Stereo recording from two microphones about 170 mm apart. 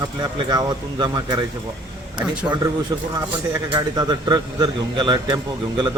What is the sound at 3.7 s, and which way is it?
A man's voice, 25° right (ahead or behind).